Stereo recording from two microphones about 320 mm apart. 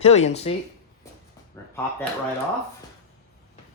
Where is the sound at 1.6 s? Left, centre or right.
Centre.